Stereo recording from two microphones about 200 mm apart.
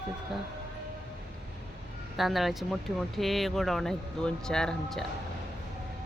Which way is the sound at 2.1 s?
Centre (ahead or behind).